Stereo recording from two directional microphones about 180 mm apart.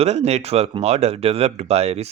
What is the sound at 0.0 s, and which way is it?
Speech, 35° right (ahead or behind).